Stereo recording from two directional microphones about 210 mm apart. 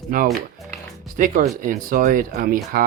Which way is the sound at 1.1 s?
40° right (ahead or behind).